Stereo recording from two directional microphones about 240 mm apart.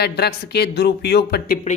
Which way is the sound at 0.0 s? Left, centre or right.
Left.